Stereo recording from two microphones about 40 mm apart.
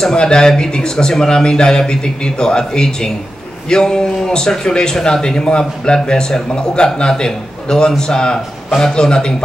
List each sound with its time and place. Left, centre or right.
0.0 s speech: left